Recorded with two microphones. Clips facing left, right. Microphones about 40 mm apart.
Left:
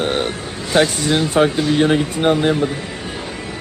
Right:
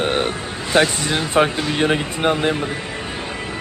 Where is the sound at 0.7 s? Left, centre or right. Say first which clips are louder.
Left 2 dB; right.